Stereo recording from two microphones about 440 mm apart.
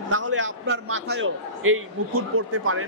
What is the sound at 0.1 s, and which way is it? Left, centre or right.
A man's voice, right.